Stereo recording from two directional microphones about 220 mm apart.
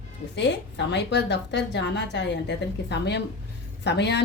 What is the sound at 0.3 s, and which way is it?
A woman's voice, 50° left (ahead or behind).